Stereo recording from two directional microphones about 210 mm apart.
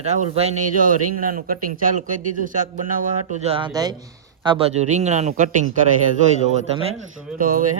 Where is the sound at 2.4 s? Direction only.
40° right (ahead or behind).